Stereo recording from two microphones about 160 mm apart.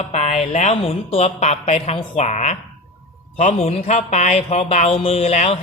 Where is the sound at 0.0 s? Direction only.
40° left (ahead or behind).